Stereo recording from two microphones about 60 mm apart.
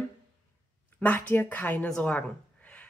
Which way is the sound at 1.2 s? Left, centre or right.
Left.